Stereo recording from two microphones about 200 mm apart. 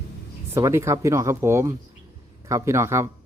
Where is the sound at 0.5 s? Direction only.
15° right (ahead or behind).